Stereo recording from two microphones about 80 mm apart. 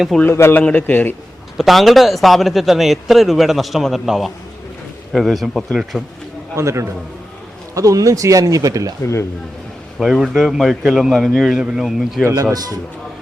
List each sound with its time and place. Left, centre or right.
0.1 s a man's voice: centre
0.5 s a man's voice: centre
1.5 s a man's voice: centre
6.6 s a man's voice: right
10.0 s a man's voice: centre
12.3 s speech: right